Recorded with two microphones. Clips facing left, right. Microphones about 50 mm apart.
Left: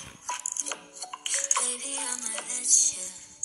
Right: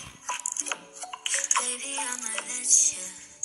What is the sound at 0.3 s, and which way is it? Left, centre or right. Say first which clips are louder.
Music: right 2 dB; right.